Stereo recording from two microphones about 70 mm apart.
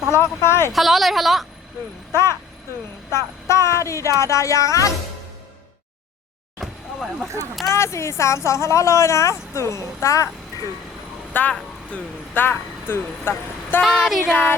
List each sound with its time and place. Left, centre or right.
0.1 s speech: left
0.7 s a woman's voice: centre
2.1 s speech: left
3.4 s speech: left
6.6 s vehicle: centre
7.7 s speech: left
11.3 s speech: left
14.0 s a woman's voice: centre